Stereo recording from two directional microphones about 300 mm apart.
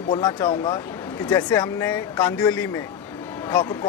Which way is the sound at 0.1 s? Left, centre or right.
Centre.